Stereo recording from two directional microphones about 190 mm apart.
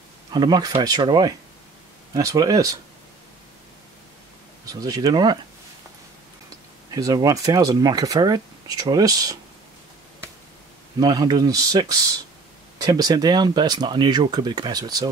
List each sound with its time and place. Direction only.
0.3 s speech: 20° right (ahead or behind)
4.6 s speech: 20° right (ahead or behind)
6.9 s speech: 20° right (ahead or behind)
11.0 s speech: 20° right (ahead or behind)